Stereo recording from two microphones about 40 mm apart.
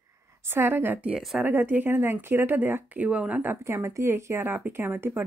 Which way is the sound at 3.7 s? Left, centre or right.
Right.